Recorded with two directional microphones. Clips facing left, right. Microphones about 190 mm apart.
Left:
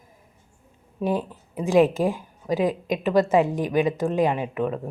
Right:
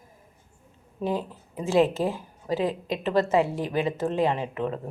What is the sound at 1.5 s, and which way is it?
Speech, 15° left (ahead or behind).